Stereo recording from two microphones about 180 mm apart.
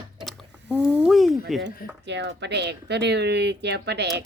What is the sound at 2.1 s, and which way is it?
Speech, 75° right (ahead or behind).